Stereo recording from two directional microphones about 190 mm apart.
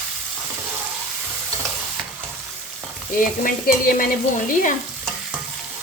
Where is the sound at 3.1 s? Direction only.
45° left (ahead or behind).